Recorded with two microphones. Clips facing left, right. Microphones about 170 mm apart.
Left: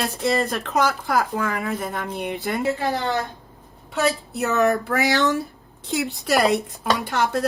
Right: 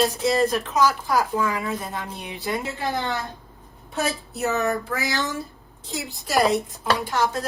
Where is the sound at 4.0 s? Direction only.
65° left (ahead or behind).